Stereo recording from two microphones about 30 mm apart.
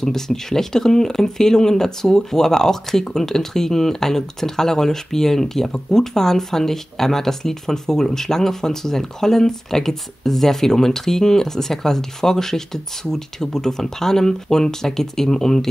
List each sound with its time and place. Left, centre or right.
0.0 s speech: centre